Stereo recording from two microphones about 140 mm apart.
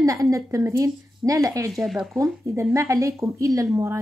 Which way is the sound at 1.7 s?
Centre (ahead or behind).